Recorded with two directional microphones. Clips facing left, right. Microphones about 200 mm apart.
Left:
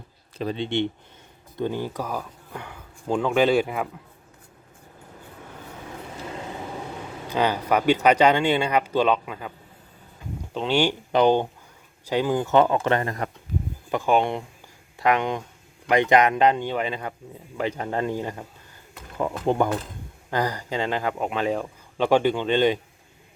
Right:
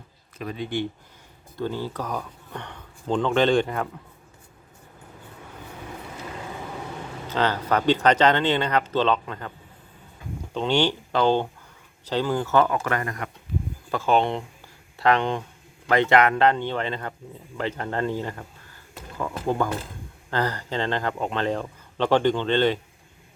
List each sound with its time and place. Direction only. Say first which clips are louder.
0.3 s speech: left 3 dB; 30° left (ahead or behind); by 3.8 s 5° left (ahead or behind)
7.3 s speech: left 1 dB; 10° left (ahead or behind)
10.5 s speech: even; 5° left (ahead or behind); by 13.3 s 30° left (ahead or behind)
13.9 s speech: even; 15° left (ahead or behind)